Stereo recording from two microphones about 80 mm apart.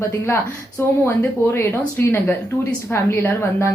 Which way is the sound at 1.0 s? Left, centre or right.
Left.